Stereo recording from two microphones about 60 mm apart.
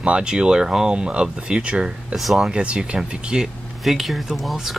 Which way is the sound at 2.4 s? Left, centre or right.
Centre.